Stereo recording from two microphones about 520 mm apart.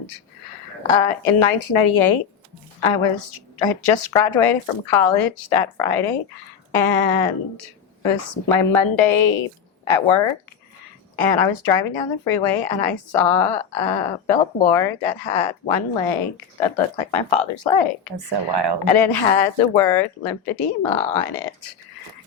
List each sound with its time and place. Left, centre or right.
0.9 s a woman's voice: left
18.3 s speech: right
18.9 s a woman's voice: left